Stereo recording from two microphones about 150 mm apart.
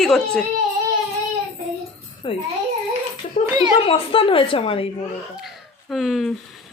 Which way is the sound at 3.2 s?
50° left (ahead or behind).